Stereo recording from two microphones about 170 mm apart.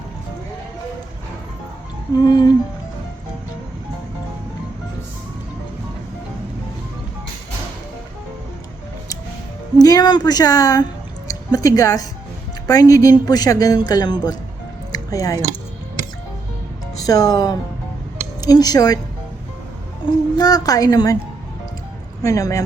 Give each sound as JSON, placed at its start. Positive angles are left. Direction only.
{"t": 2.1, "sound": "speech", "side_deg": 25}
{"t": 9.7, "sound": "a woman's voice", "side_deg": 25}
{"t": 14.9, "sound": "music", "side_deg": 20}
{"t": 17.0, "sound": "speech", "side_deg": 20}
{"t": 20.3, "sound": "speech", "side_deg": 20}
{"t": 22.2, "sound": "speech", "side_deg": 20}